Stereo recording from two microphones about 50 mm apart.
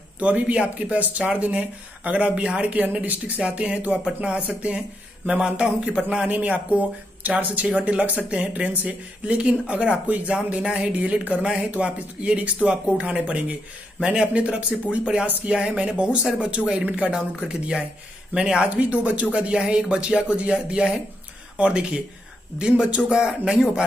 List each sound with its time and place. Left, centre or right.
0.2 s speech: right
6.3 s speech: right
17.4 s speech: centre